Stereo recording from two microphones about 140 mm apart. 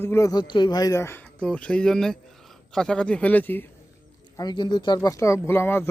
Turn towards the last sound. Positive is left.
turn(degrees=15)  # may be behind; listen again after turning